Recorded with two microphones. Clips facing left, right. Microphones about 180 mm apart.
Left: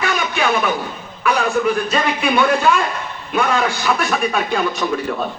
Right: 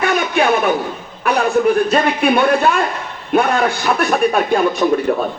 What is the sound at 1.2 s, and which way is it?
A man's voice, 60° right (ahead or behind).